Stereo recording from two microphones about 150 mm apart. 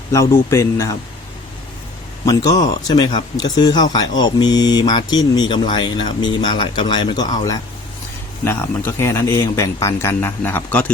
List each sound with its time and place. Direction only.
0.1 s speech: 20° left (ahead or behind)
2.2 s speech: 25° left (ahead or behind)